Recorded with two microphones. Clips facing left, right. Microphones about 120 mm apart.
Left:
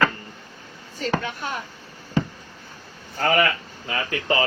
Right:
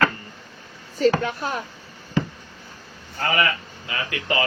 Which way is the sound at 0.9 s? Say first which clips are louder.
Right 6 dB; 40° right (ahead or behind).